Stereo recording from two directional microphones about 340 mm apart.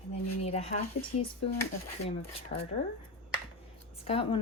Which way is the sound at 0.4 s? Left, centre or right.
Centre.